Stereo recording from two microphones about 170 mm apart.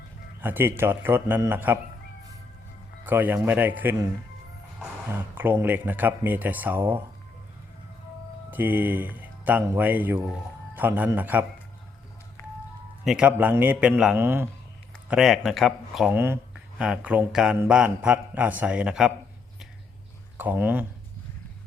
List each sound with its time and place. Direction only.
0.4 s speech: 15° right (ahead or behind)
3.1 s speech: 10° right (ahead or behind)
5.1 s speech: 10° right (ahead or behind)
8.4 s speech: 10° right (ahead or behind)
12.4 s music: 15° left (ahead or behind)
13.1 s speech: 5° right (ahead or behind)
15.1 s speech: centre (ahead or behind)
16.1 s speech: 15° right (ahead or behind)
20.3 s speech: 10° right (ahead or behind)